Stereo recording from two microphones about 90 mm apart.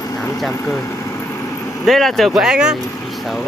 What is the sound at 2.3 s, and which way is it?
Speech, 10° right (ahead or behind).